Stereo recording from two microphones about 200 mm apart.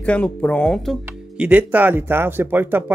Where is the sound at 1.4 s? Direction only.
5° right (ahead or behind).